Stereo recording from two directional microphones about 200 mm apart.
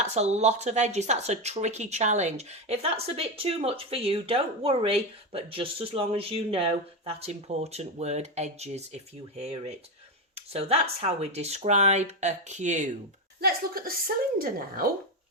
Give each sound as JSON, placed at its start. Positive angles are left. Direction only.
{"t": 0.0, "sound": "speech", "side_deg": -35}
{"t": 13.4, "sound": "speech", "side_deg": -50}